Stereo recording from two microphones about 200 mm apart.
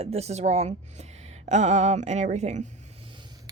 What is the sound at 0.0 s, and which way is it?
A woman's voice, 30° right (ahead or behind).